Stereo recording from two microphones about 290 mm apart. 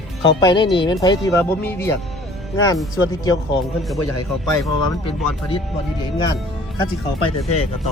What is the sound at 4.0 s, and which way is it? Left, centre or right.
Speech, left.